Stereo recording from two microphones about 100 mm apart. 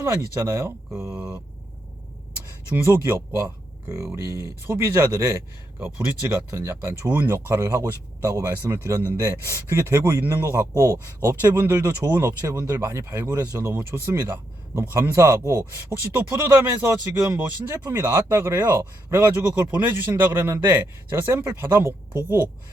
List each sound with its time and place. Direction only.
0.0 s speech: 25° right (ahead or behind)
1.1 s speech: 10° right (ahead or behind)
2.7 s speech: 25° right (ahead or behind)
13.3 s speech: 35° right (ahead or behind)